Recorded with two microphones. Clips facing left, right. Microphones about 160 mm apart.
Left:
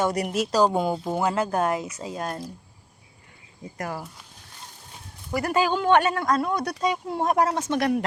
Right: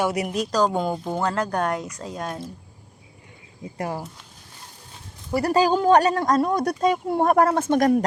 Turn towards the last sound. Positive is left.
turn(degrees=-45)  # may be behind; listen again after turning